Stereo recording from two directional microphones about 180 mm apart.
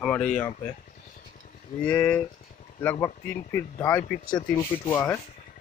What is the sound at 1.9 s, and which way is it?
Speech, 10° left (ahead or behind).